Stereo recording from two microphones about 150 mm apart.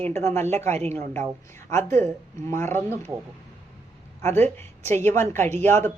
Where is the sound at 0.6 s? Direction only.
50° right (ahead or behind).